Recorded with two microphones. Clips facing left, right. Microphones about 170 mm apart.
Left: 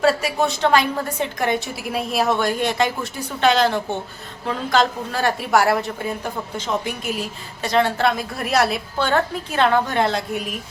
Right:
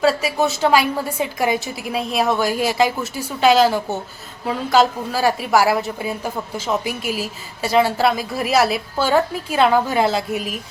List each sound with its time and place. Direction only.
0.0 s speech: centre (ahead or behind)